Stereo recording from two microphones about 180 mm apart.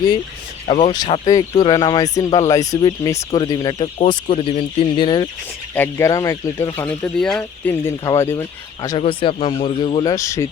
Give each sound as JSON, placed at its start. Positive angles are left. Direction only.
{"t": 0.7, "sound": "speech", "side_deg": 30}
{"t": 5.7, "sound": "speech", "side_deg": 15}
{"t": 9.0, "sound": "speech", "side_deg": 30}